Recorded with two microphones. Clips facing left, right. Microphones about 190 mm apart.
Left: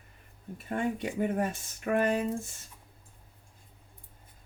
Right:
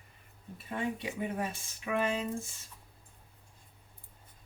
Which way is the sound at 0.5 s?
50° left (ahead or behind).